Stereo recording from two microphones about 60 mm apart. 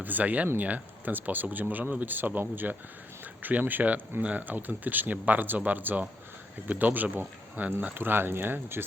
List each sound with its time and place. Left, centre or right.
0.0 s speech: right